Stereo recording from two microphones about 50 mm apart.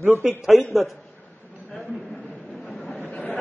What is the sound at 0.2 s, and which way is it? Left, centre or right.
Speech, centre.